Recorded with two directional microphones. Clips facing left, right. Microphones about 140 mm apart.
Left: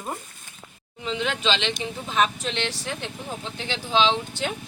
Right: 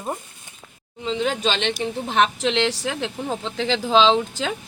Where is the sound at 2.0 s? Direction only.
70° right (ahead or behind); by 4.5 s 90° right.